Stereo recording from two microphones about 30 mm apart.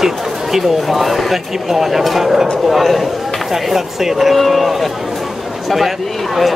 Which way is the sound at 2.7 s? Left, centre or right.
Centre.